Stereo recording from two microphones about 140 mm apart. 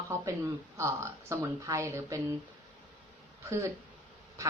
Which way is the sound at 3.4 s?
25° right (ahead or behind).